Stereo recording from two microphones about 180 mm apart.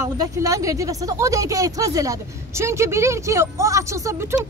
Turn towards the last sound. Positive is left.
turn(degrees=-15)  # may be behind; listen again after turning